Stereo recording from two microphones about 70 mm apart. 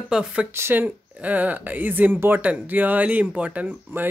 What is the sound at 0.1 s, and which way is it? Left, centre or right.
Speech, centre.